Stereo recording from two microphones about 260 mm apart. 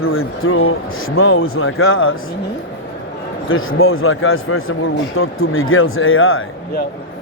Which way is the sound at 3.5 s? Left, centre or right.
Left.